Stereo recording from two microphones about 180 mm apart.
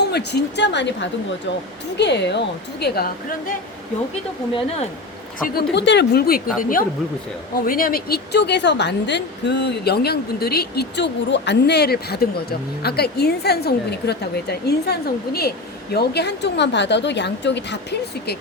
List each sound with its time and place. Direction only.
0.0 s speech: 70° left (ahead or behind)
2.8 s a woman's voice: 60° left (ahead or behind)
4.5 s speech: 35° left (ahead or behind)
5.4 s a woman's voice: 65° left (ahead or behind)